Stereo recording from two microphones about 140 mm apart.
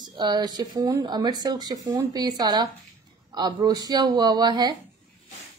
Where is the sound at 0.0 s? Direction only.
30° right (ahead or behind).